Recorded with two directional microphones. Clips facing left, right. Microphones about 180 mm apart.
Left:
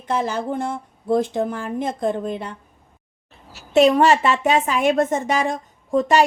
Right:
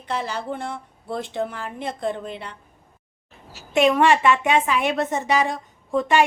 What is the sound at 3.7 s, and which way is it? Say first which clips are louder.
A woman's voice: left 3 dB; 35° left (ahead or behind).